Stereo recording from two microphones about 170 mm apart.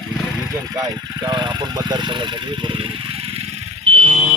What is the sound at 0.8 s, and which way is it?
Speech, 25° right (ahead or behind).